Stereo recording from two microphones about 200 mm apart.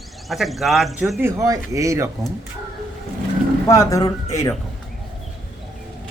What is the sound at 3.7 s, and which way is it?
Speech, 15° left (ahead or behind).